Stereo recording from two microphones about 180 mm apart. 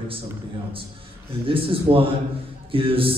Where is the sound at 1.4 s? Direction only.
30° right (ahead or behind).